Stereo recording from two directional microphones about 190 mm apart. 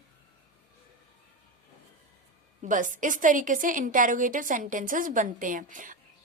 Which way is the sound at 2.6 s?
45° right (ahead or behind).